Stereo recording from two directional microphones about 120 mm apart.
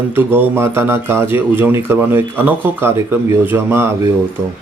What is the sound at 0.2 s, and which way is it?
Speech, 20° right (ahead or behind).